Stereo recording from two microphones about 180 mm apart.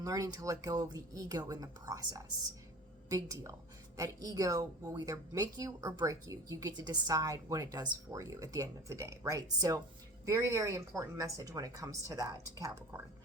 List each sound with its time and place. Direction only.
0.0 s speech: 20° right (ahead or behind)